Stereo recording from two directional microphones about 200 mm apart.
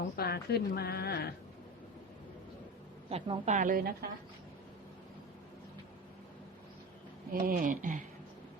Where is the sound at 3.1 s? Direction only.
30° right (ahead or behind).